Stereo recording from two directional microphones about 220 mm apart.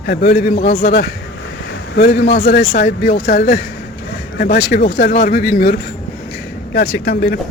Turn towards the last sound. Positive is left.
turn(degrees=45)  # may be behind; listen again after turning